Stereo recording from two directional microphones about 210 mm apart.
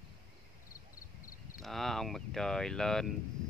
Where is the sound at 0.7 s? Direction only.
40° left (ahead or behind).